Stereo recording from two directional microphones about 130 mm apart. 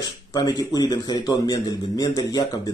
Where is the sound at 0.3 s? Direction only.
30° left (ahead or behind).